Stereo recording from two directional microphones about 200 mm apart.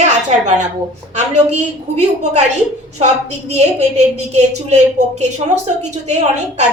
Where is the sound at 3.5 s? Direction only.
35° right (ahead or behind).